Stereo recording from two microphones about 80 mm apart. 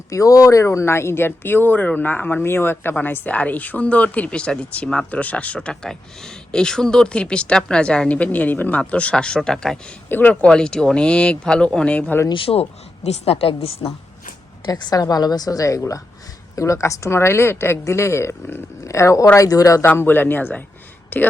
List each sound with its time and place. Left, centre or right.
0.1 s speech: left; by 9.9 s centre
10.1 s speech: left
10.5 s speech: centre
12.5 s a woman's voice: left
14.6 s a woman's voice: left
19.8 s speech: left